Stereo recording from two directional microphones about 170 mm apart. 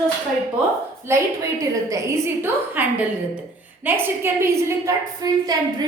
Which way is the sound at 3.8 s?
10° right (ahead or behind).